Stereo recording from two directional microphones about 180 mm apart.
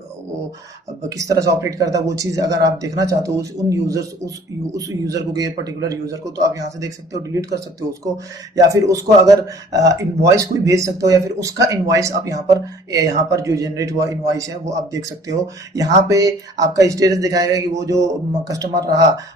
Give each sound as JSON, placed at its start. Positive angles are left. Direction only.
{"t": 1.0, "sound": "a man's voice", "side_deg": -20}